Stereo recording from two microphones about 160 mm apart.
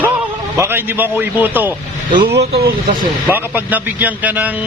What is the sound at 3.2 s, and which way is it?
Speech, 10° right (ahead or behind).